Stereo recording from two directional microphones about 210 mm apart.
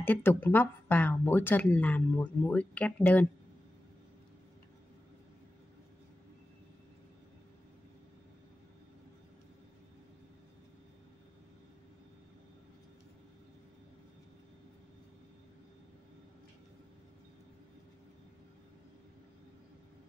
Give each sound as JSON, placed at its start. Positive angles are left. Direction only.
{"t": 0.0, "sound": "speech", "side_deg": 10}